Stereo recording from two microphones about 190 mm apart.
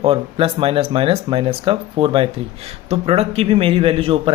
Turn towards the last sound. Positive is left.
turn(degrees=-30)  # may be behind; listen again after turning